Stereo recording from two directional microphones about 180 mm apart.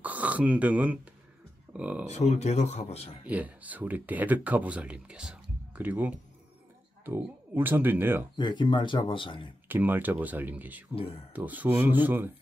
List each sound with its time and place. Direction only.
0.0 s speech: 10° right (ahead or behind)
2.0 s speech: 40° left (ahead or behind)
3.3 s speech: 10° right (ahead or behind)
8.4 s speech: 25° left (ahead or behind)
9.7 s speech: 10° right (ahead or behind)
11.0 s speech: 30° left (ahead or behind)
11.3 s speech: 10° right (ahead or behind)